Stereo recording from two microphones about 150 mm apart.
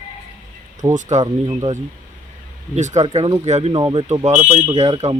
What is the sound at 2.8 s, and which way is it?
Speech, 55° right (ahead or behind).